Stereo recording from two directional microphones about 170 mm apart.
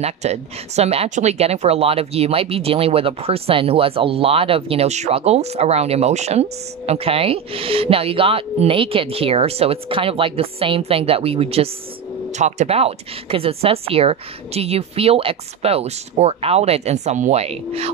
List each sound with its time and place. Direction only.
0.0 s speech: 40° right (ahead or behind)